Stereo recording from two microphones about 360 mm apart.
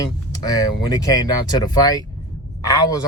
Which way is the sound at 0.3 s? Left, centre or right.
Centre.